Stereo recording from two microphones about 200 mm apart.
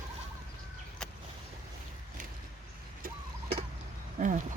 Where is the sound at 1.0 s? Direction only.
5° left (ahead or behind).